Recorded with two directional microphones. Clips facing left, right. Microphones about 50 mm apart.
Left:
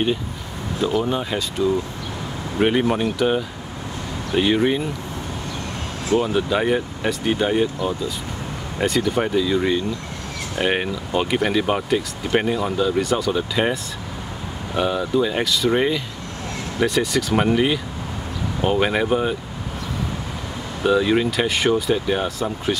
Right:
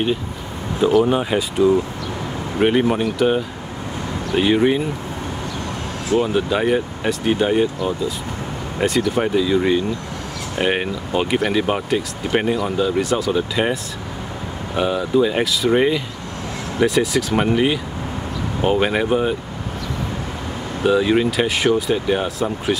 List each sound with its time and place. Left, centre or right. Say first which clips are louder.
1.0 s speech: right 5 dB; centre
2.6 s speech: right 2 dB; centre
6.1 s speech: right 1 dB; centre
14.8 s speech: right 2 dB; centre
20.8 s speech: right 2 dB; centre